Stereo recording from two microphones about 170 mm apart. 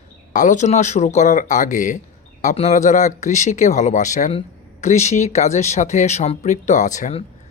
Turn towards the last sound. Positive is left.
turn(degrees=40)  # may be behind; listen again after turning